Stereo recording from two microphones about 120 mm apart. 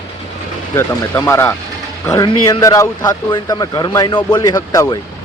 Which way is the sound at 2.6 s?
30° left (ahead or behind).